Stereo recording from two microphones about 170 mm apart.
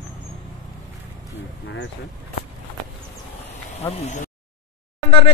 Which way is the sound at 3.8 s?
40° left (ahead or behind).